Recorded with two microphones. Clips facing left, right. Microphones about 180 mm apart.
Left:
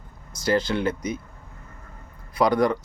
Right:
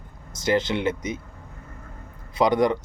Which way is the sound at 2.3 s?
20° right (ahead or behind).